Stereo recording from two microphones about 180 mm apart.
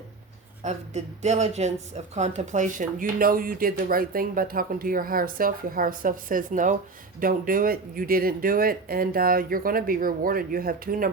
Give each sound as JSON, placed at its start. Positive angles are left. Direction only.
{"t": 0.6, "sound": "a woman's voice", "side_deg": -40}